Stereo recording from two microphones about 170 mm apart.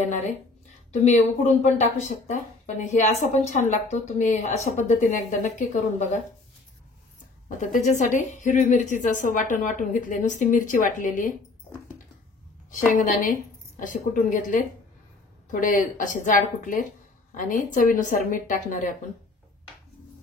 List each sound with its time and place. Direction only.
0.0 s speech: 45° left (ahead or behind)
7.4 s speech: 45° left (ahead or behind)
13.0 s speech: 50° left (ahead or behind)